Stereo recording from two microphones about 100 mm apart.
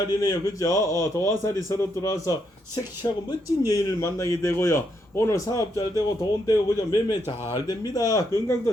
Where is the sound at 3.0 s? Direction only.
45° left (ahead or behind).